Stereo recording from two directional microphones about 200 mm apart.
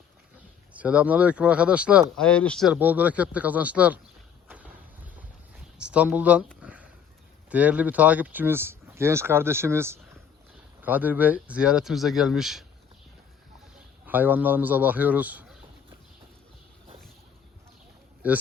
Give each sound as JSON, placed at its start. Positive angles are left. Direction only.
{"t": 0.7, "sound": "speech", "side_deg": -5}
{"t": 2.2, "sound": "speech", "side_deg": 5}
{"t": 2.7, "sound": "speech", "side_deg": -10}
{"t": 4.4, "sound": "a sound", "side_deg": -10}
{"t": 5.8, "sound": "speech", "side_deg": -5}
{"t": 6.6, "sound": "a sound", "side_deg": -5}
{"t": 7.5, "sound": "speech", "side_deg": -10}
{"t": 14.1, "sound": "speech", "side_deg": -10}
{"t": 18.2, "sound": "speech", "side_deg": -10}